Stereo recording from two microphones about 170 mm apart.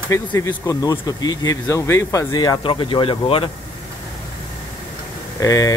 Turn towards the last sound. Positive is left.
turn(degrees=20)  # may be behind; listen again after turning